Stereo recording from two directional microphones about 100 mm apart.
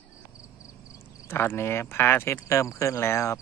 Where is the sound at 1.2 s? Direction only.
25° left (ahead or behind).